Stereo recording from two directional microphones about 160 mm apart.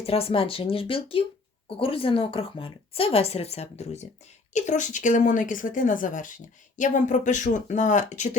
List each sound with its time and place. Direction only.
0.0 s a woman's voice: 35° left (ahead or behind)